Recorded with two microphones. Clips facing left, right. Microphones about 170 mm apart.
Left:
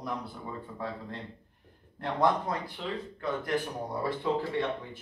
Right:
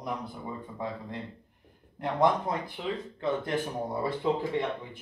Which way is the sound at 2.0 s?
20° right (ahead or behind).